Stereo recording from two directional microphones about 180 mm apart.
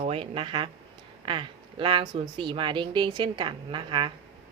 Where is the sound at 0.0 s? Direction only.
30° right (ahead or behind).